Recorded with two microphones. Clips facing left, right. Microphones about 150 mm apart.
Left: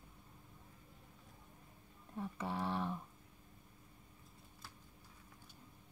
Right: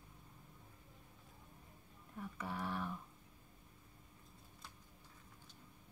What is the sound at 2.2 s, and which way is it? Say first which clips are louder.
Speech: left 4 dB; 25° left (ahead or behind).